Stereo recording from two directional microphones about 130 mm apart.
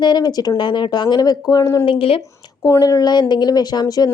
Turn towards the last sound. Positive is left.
turn(degrees=30)  # may be behind; listen again after turning